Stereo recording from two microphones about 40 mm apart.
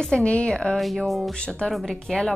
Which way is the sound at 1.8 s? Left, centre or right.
Centre.